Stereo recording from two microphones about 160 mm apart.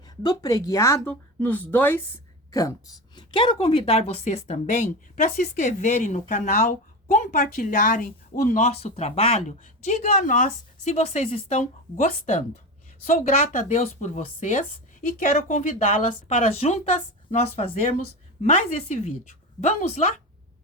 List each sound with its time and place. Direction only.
0.2 s a woman's voice: 25° left (ahead or behind)
3.2 s speech: 30° left (ahead or behind)